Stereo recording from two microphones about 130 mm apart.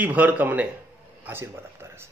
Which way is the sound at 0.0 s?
15° right (ahead or behind).